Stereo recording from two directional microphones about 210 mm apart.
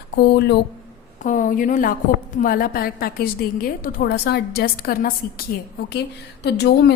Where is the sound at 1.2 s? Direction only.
40° left (ahead or behind).